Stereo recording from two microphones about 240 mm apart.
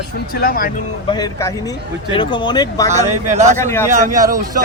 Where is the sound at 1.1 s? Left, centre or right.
Centre.